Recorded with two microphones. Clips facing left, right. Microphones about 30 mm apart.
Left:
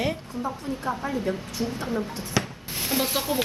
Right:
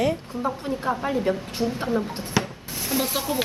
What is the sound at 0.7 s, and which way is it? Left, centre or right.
Speech, centre.